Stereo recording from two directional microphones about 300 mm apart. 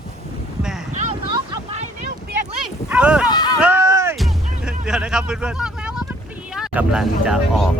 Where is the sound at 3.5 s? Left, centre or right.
Centre.